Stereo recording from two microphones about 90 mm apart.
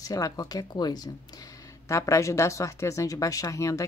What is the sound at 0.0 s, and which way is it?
Speech, 40° left (ahead or behind).